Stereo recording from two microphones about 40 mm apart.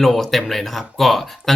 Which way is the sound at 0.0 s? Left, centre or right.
Centre.